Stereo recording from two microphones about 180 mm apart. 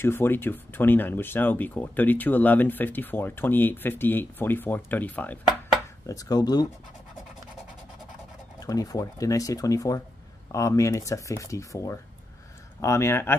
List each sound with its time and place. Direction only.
0.0 s speech: 10° left (ahead or behind)
6.0 s speech: 20° left (ahead or behind)
8.5 s speech: 20° left (ahead or behind)